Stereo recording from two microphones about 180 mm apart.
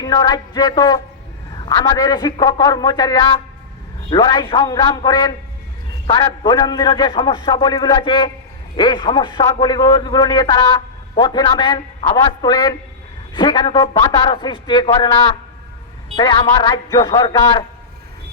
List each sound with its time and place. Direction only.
0.0 s a man's voice: 20° left (ahead or behind)
6.4 s a man's voice: 25° left (ahead or behind)